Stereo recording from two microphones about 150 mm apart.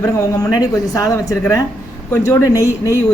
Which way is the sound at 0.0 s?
25° left (ahead or behind).